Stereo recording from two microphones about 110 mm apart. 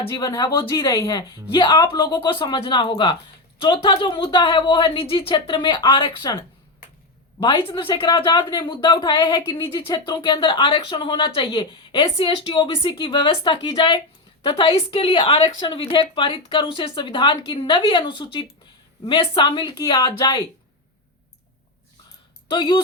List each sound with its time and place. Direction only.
0.1 s a woman's voice: 35° left (ahead or behind); by 8.3 s 55° left (ahead or behind)
8.3 s a woman's voice: 40° left (ahead or behind)
22.4 s speech: 50° left (ahead or behind)